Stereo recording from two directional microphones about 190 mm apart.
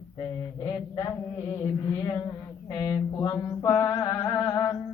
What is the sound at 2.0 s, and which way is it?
Mantra, 20° left (ahead or behind).